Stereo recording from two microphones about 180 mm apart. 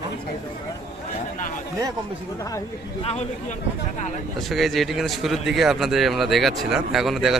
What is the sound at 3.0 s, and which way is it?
Speech, 35° left (ahead or behind).